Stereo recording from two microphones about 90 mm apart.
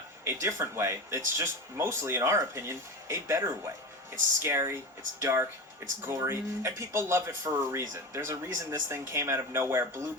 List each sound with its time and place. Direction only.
0.3 s speech: 30° right (ahead or behind)